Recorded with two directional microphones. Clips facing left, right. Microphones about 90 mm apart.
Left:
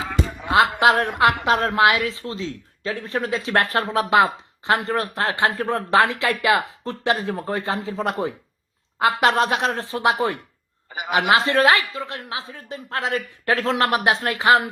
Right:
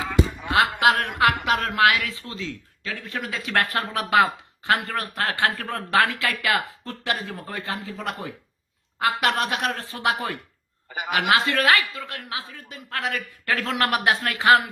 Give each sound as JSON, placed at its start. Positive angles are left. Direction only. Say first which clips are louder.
{"t": 0.5, "sound": "a woman's voice", "louder": "left 3 dB", "side_deg": 25}